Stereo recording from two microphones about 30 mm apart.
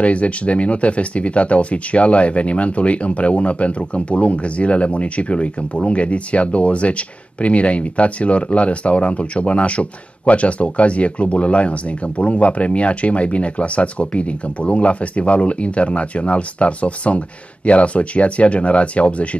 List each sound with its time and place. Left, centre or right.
0.0 s speech: left